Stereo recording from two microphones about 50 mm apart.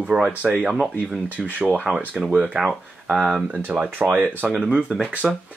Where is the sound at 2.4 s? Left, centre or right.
Centre.